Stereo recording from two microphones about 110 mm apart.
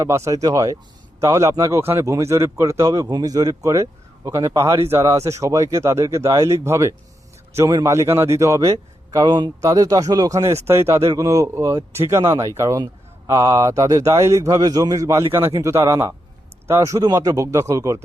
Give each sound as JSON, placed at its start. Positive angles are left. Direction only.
{"t": 0.0, "sound": "speech", "side_deg": -30}